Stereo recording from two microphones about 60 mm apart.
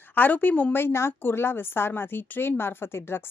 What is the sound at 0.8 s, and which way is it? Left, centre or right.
A woman's voice, left.